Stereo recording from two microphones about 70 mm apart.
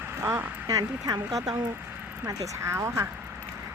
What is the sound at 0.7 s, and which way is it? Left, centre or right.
Speech, right.